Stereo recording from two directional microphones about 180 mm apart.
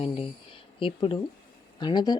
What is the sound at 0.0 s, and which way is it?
Speech, 30° left (ahead or behind).